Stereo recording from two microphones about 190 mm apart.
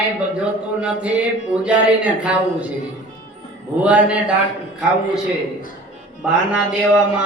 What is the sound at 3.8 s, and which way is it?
Speech, 5° right (ahead or behind).